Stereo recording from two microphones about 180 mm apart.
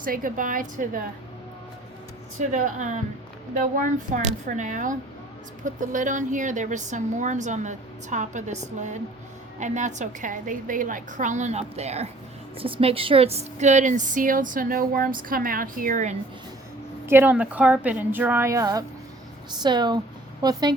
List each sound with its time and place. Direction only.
0.0 s a woman's voice: 50° right (ahead or behind)
2.4 s a woman's voice: 40° right (ahead or behind)
17.1 s a woman's voice: 10° right (ahead or behind)